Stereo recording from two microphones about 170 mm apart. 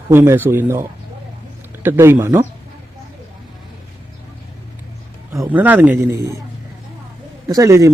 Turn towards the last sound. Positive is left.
turn(degrees=-20)  # may be behind; listen again after turning